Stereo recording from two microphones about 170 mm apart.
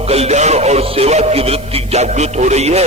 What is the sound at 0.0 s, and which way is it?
A man's voice, 35° right (ahead or behind).